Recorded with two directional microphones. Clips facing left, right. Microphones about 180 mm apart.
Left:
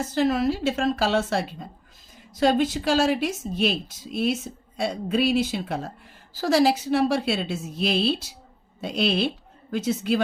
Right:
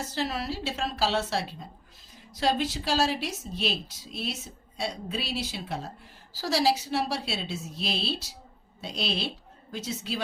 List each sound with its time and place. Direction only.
0.0 s speech: 50° left (ahead or behind)